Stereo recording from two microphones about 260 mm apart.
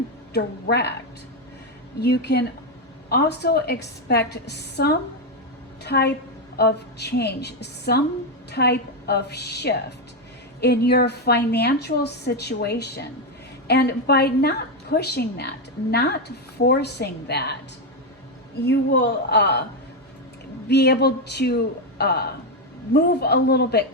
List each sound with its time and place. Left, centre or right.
0.3 s a woman's voice: left
2.0 s a woman's voice: left
19.3 s a woman's voice: left
20.7 s a woman's voice: left